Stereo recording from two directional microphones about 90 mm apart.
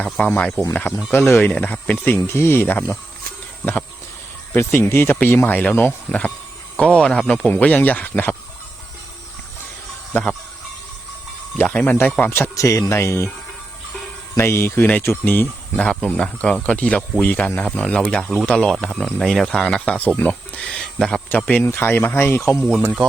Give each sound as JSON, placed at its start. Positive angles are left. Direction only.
{"t": 0.0, "sound": "speech", "side_deg": 15}
{"t": 2.1, "sound": "speech", "side_deg": 30}
{"t": 4.5, "sound": "speech", "side_deg": 25}
{"t": 10.1, "sound": "speech", "side_deg": 15}
{"t": 11.7, "sound": "speech", "side_deg": 20}
{"t": 12.5, "sound": "speech", "side_deg": 35}
{"t": 14.3, "sound": "speech", "side_deg": 30}
{"t": 15.7, "sound": "speech", "side_deg": 10}
{"t": 20.1, "sound": "speech", "side_deg": 20}
{"t": 22.8, "sound": "speech", "side_deg": -10}